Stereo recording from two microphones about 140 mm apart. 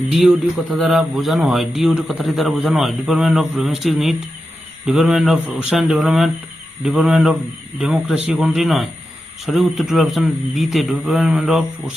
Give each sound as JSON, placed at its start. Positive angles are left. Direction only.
{"t": 0.1, "sound": "a man's voice", "side_deg": 0}